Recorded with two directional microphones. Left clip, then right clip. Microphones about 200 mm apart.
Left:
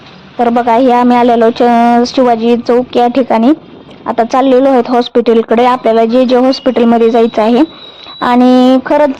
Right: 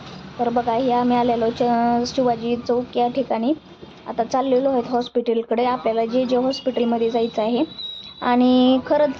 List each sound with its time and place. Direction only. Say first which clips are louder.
0.4 s speech: left 12 dB; 35° left (ahead or behind)